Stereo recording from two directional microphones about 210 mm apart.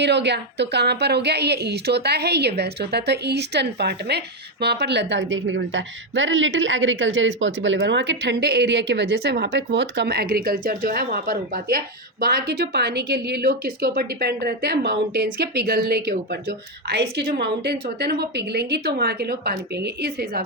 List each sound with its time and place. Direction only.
0.0 s a woman's voice: 55° right (ahead or behind)